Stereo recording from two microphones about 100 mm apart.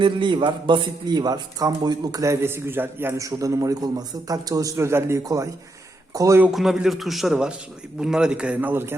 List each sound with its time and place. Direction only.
0.0 s a man's voice: 50° right (ahead or behind)
2.2 s a man's voice: 25° right (ahead or behind)
3.2 s a man's voice: 35° right (ahead or behind)
6.5 s a man's voice: 5° right (ahead or behind); by 9.0 s 20° right (ahead or behind)